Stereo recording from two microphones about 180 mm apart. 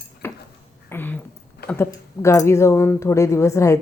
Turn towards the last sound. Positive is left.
turn(degrees=15)  # may be behind; listen again after turning